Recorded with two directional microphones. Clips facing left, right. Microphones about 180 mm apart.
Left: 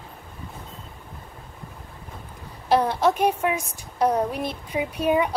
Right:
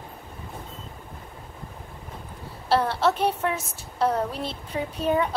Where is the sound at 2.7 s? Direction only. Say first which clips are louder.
Left 2 dB; 15° left (ahead or behind).